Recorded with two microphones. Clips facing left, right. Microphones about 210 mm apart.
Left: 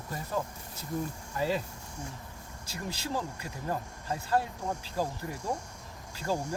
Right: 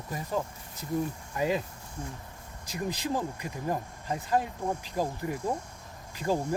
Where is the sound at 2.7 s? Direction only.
15° right (ahead or behind).